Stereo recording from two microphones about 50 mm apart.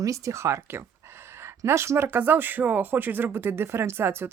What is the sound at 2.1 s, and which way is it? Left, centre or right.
Speech, right.